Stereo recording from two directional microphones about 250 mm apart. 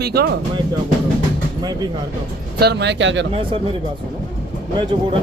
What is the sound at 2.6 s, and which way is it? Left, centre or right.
Speech, right.